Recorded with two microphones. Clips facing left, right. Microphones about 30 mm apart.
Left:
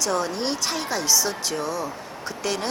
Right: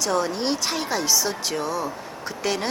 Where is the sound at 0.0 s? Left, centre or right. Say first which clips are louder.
Right 1 dB; centre.